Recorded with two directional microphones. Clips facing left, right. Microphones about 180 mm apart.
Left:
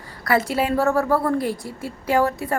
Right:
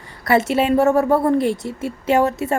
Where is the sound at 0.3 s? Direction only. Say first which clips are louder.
Right 4 dB; 25° right (ahead or behind).